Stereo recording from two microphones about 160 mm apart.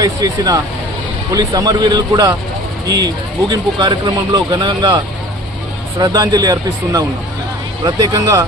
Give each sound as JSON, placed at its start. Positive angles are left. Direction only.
{"t": 0.0, "sound": "speech", "side_deg": -25}
{"t": 6.0, "sound": "speech", "side_deg": -25}